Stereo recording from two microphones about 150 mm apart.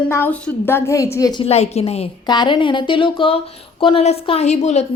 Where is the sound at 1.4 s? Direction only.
45° left (ahead or behind).